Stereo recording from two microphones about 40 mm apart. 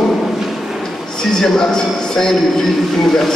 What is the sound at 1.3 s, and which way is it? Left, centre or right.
A man's voice, centre.